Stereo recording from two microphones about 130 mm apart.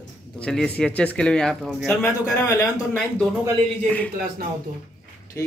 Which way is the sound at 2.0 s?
15° left (ahead or behind).